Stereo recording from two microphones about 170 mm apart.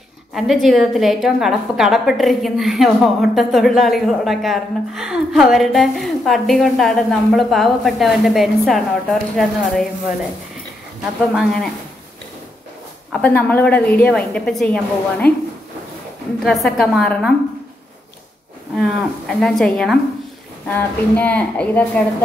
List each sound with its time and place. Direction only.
0.3 s a woman's voice: centre (ahead or behind)
11.3 s a woman's voice: centre (ahead or behind)
13.1 s a woman's voice: 5° left (ahead or behind)
16.4 s a woman's voice: centre (ahead or behind)
18.8 s a woman's voice: centre (ahead or behind)